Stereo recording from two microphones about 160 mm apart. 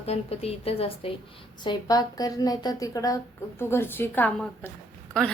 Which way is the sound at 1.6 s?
25° left (ahead or behind).